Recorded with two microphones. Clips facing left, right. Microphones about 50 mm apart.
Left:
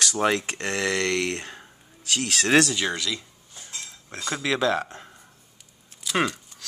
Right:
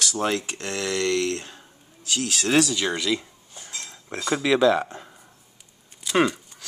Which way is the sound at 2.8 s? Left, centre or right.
Centre.